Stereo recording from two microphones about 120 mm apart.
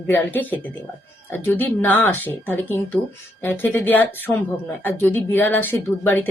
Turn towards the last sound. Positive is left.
turn(degrees=15)  # may be behind; listen again after turning